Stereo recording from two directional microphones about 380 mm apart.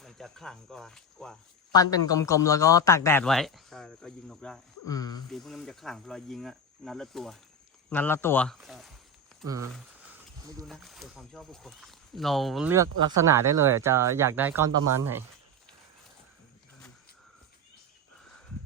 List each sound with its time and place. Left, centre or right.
0.0 s speech: centre
12.9 s speech: right
13.7 s speech: centre
14.7 s speech: right